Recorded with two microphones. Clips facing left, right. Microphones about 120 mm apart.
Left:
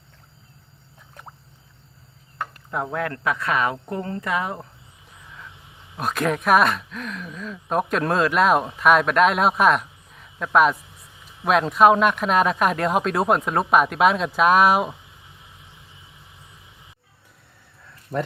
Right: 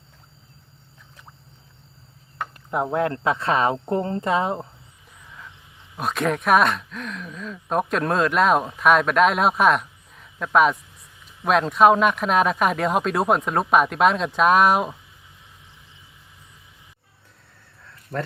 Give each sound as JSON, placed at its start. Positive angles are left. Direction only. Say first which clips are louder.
{"t": 1.2, "sound": "a sound", "louder": "left 7 dB", "side_deg": 50}
{"t": 2.5, "sound": "speech", "louder": "right 5 dB", "side_deg": -20}
{"t": 6.0, "sound": "speech", "louder": "even", "side_deg": 0}
{"t": 18.1, "sound": "speech", "louder": "left 3 dB", "side_deg": 15}